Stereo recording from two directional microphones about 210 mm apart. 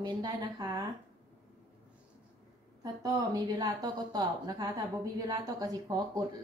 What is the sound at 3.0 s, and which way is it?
A woman's voice, 20° right (ahead or behind).